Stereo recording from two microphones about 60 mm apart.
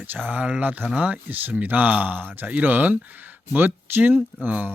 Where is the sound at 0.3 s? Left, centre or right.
Right.